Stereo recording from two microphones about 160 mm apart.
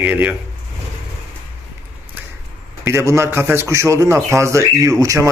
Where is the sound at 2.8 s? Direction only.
15° right (ahead or behind).